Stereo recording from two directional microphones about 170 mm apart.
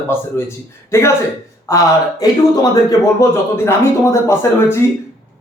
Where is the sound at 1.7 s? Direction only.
20° left (ahead or behind).